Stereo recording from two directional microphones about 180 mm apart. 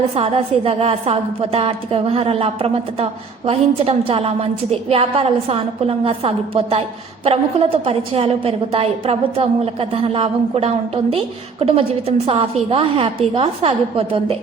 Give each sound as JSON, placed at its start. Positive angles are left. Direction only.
{"t": 0.2, "sound": "a woman's voice", "side_deg": -30}